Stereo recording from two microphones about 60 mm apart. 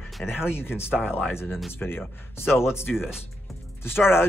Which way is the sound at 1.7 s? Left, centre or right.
Left.